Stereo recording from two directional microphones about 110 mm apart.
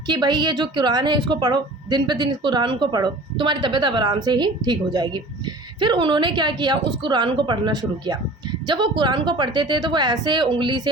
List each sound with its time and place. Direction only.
0.1 s a woman's voice: 40° right (ahead or behind)